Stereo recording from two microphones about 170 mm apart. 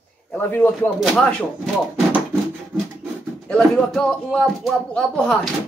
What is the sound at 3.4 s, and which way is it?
A woman's voice, 5° left (ahead or behind).